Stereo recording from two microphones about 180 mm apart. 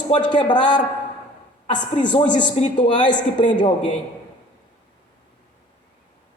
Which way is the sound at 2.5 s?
35° left (ahead or behind).